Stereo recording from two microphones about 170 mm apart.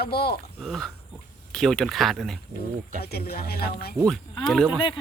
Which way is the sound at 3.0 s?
65° left (ahead or behind).